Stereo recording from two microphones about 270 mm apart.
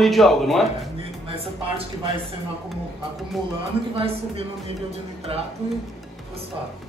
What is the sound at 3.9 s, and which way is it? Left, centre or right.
Speech, right.